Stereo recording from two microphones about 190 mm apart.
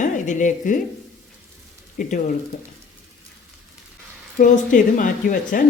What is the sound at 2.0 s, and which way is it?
Speech, 40° left (ahead or behind).